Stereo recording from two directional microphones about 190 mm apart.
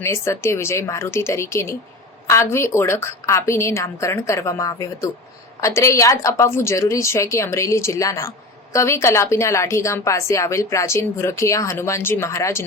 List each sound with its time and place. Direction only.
0.0 s a woman's voice: 15° left (ahead or behind)